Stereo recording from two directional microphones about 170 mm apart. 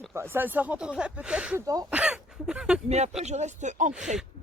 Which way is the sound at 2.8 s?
40° right (ahead or behind).